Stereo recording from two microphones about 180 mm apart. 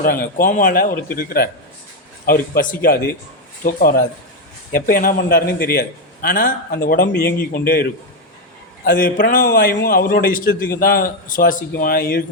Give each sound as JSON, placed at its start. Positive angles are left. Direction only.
{"t": 0.3, "sound": "a man's voice", "side_deg": 50}